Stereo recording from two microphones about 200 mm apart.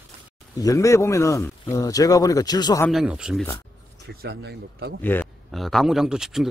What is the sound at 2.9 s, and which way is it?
Speech, 5° right (ahead or behind).